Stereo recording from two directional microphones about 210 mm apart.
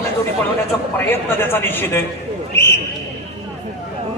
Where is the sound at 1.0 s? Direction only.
10° left (ahead or behind).